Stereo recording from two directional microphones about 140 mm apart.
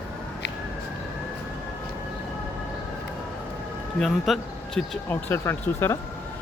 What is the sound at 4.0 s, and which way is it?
Speech, centre (ahead or behind).